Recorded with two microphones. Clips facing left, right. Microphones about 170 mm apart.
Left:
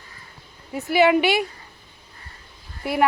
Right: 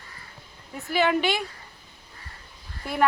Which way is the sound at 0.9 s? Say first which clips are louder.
Left 6 dB; 10° left (ahead or behind).